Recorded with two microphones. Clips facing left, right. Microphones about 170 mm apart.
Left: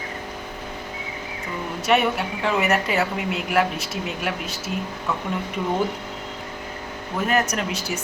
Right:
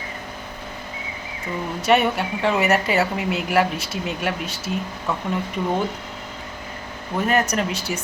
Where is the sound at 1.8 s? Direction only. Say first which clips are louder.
Right 2 dB; centre (ahead or behind).